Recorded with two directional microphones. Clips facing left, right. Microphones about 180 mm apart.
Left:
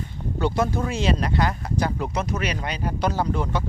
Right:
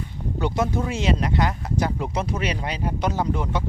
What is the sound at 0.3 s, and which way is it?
Speech, 20° right (ahead or behind).